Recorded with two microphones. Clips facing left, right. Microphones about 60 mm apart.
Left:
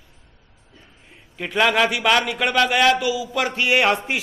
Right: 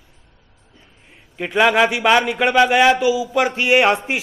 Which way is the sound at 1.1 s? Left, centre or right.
Centre.